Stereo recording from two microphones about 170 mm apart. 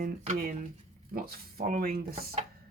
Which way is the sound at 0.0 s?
60° right (ahead or behind).